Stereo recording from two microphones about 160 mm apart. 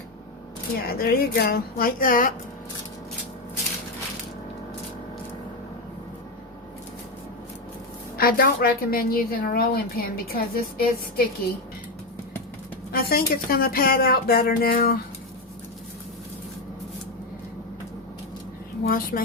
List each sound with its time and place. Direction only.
0.8 s a woman's voice: 70° left (ahead or behind)
8.2 s a woman's voice: 70° left (ahead or behind)
12.9 s a woman's voice: 75° left (ahead or behind)
18.9 s a woman's voice: 65° left (ahead or behind)